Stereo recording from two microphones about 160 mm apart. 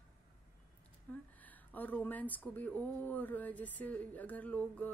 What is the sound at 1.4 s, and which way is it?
A woman's voice, 10° left (ahead or behind).